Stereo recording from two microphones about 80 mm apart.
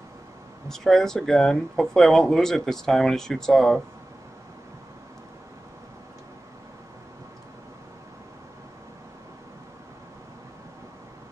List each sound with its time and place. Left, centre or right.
0.7 s speech: centre